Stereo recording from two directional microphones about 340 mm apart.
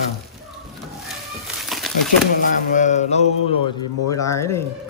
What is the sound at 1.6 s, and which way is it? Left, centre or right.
Crumpling, centre.